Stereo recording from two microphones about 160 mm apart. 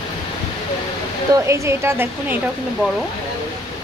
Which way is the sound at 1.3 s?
20° right (ahead or behind).